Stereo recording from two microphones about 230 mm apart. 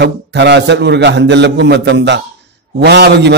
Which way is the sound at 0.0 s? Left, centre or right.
Right.